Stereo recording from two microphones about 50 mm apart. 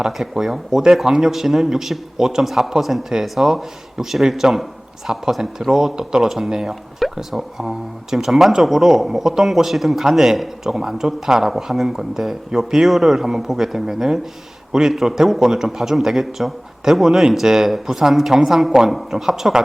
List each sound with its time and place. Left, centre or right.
0.0 s a man's voice: centre